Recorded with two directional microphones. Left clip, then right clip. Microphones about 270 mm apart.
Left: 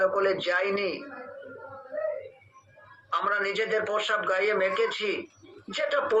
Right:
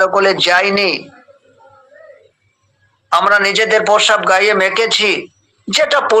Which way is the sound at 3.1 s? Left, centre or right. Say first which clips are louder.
Right 16 dB; right.